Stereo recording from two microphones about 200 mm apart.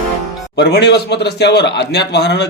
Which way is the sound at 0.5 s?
55° left (ahead or behind).